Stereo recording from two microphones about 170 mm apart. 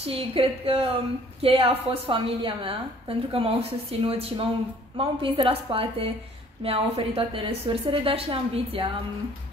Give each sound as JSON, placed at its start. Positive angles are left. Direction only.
{"t": 0.0, "sound": "a woman's voice", "side_deg": -35}